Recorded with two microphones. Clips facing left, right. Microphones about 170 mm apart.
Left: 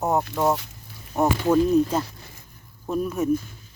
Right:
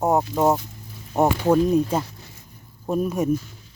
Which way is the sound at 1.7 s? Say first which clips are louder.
Even; 10° right (ahead or behind).